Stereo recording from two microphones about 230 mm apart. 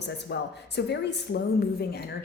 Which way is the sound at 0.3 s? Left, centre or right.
Left.